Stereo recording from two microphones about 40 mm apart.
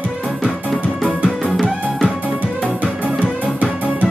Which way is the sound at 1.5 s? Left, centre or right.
Centre.